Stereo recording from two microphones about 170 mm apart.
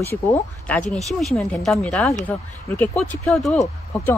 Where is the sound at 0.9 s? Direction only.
Centre (ahead or behind).